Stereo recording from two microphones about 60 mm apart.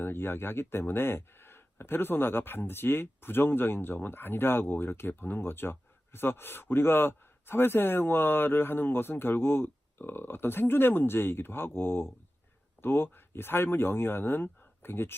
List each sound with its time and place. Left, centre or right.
0.0 s speech: left